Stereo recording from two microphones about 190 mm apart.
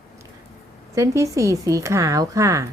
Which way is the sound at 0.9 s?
15° right (ahead or behind).